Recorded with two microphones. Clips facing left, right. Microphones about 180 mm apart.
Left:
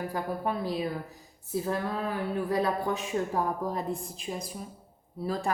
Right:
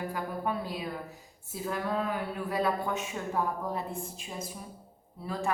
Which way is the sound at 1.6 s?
35° left (ahead or behind).